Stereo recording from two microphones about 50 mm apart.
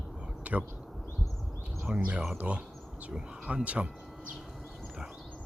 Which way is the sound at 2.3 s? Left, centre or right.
Right.